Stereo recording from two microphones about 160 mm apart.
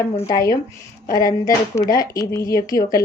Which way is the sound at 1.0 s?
25° left (ahead or behind).